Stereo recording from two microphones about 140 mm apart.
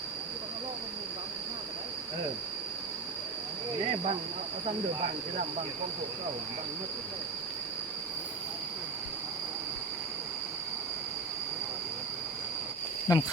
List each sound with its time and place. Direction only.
13.1 s speech: 25° left (ahead or behind)